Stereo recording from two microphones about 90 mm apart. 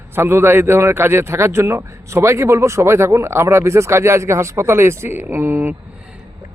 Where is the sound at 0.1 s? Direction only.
25° right (ahead or behind).